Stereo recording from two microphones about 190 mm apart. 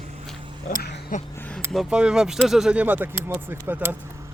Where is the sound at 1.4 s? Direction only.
10° left (ahead or behind).